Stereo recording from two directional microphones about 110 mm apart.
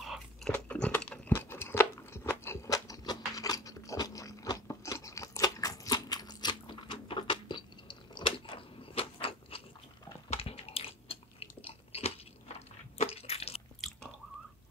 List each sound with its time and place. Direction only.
0.0 s biting: centre (ahead or behind)
0.5 s crunch: 10° left (ahead or behind); by 9.6 s 60° left (ahead or behind)
10.3 s biting: 60° left (ahead or behind)
12.5 s squish: 75° left (ahead or behind)